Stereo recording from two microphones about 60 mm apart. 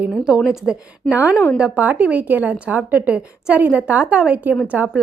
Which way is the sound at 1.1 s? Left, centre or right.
Right.